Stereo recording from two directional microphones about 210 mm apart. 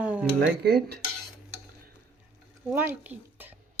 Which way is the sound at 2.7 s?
10° right (ahead or behind).